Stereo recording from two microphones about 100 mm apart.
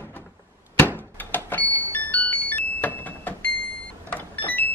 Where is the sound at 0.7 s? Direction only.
20° left (ahead or behind).